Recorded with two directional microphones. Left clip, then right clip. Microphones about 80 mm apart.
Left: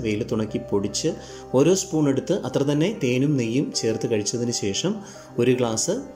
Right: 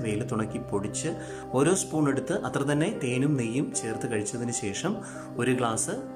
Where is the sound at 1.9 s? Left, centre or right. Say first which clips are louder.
Left 4 dB; centre.